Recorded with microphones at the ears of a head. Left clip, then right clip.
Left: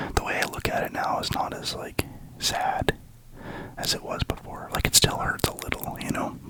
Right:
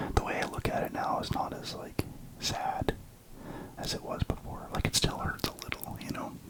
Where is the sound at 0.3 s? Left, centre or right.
Left.